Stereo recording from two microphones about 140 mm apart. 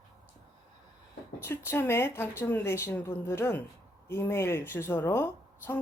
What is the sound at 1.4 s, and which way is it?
Speech, 15° left (ahead or behind).